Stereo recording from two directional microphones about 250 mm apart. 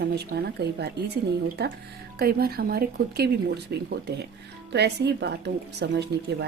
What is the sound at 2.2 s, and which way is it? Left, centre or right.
Speech, right.